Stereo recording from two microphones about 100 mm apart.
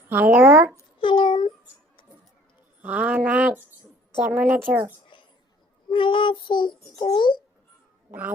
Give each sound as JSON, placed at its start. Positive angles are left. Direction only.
{"t": 0.1, "sound": "speech", "side_deg": -20}
{"t": 0.9, "sound": "a sound", "side_deg": 55}
{"t": 2.8, "sound": "a woman's voice", "side_deg": -15}
{"t": 5.9, "sound": "a child's voice", "side_deg": 55}